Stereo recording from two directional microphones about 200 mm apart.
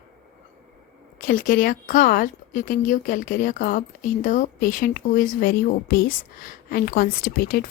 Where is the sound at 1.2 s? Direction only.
45° left (ahead or behind).